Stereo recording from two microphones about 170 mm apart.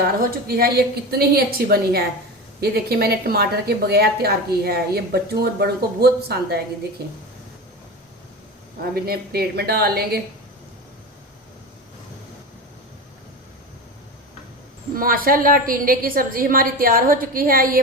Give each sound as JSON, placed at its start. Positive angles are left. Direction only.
{"t": 0.2, "sound": "a woman's voice", "side_deg": -60}
{"t": 9.0, "sound": "a woman's voice", "side_deg": -65}
{"t": 14.9, "sound": "a woman's voice", "side_deg": -55}